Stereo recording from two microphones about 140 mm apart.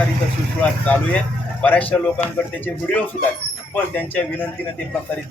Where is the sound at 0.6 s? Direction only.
10° left (ahead or behind).